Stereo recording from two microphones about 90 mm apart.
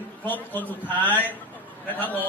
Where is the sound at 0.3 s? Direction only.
20° left (ahead or behind).